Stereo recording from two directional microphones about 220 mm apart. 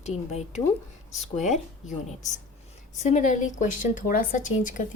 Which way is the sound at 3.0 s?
35° left (ahead or behind).